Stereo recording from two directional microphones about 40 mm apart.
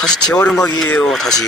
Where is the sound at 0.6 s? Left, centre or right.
Left.